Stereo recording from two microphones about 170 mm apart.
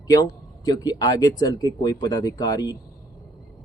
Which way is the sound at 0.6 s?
25° left (ahead or behind).